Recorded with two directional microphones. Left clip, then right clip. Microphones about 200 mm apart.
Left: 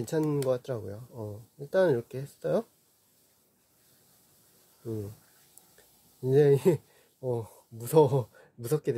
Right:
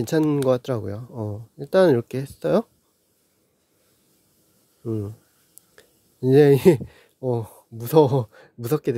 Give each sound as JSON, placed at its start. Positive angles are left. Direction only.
{"t": 0.0, "sound": "speech", "side_deg": -35}
{"t": 6.2, "sound": "speech", "side_deg": -40}